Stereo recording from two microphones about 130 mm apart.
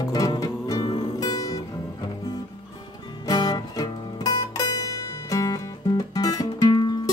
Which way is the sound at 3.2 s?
30° left (ahead or behind).